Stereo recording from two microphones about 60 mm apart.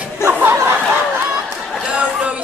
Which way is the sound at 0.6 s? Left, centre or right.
Right.